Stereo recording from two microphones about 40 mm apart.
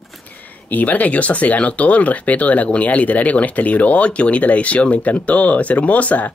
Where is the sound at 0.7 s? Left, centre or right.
Left.